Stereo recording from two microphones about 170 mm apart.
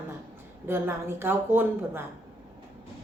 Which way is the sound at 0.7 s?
15° right (ahead or behind).